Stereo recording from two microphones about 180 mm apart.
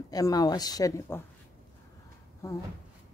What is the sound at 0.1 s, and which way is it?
Speech, 20° left (ahead or behind).